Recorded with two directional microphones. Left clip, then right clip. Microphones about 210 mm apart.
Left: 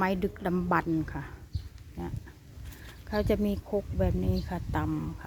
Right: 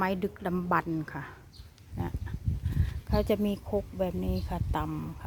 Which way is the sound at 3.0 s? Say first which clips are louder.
Even; 5° right (ahead or behind).